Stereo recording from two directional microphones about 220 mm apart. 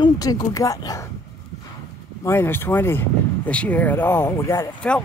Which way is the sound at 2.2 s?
10° left (ahead or behind).